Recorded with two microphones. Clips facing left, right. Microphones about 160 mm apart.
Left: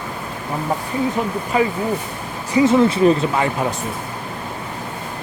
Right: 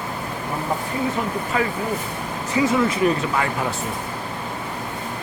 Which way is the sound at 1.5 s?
15° left (ahead or behind).